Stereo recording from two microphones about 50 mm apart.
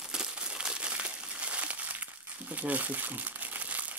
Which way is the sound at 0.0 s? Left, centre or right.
Centre.